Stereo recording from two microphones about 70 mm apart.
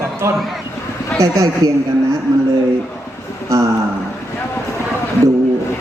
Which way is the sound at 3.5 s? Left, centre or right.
Right.